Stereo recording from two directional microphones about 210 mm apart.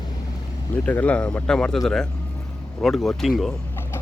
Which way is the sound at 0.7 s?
10° left (ahead or behind).